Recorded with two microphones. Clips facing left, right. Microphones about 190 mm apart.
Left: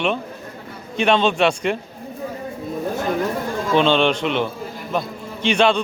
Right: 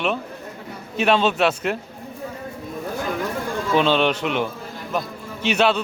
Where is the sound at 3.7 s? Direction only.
5° right (ahead or behind).